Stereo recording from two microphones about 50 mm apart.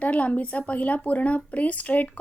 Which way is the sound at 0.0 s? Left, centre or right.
Left.